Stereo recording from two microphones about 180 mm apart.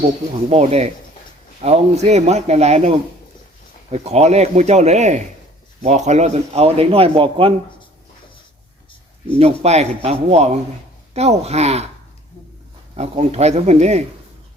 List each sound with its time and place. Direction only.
0.5 s speech: 35° right (ahead or behind)
3.9 s speech: 35° right (ahead or behind)
9.4 s speech: 35° right (ahead or behind)
13.0 s speech: 35° right (ahead or behind)